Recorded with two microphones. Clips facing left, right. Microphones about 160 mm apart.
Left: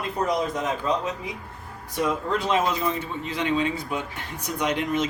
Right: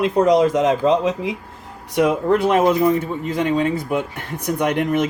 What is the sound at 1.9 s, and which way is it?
Speech, 70° right (ahead or behind).